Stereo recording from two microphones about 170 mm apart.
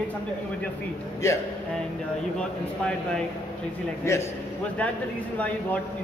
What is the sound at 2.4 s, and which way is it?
Speech, 5° left (ahead or behind).